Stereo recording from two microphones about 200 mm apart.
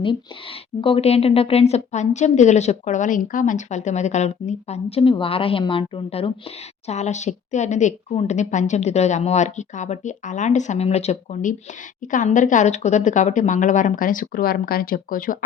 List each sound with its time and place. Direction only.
0.8 s a woman's voice: 25° left (ahead or behind); by 15.4 s 45° left (ahead or behind)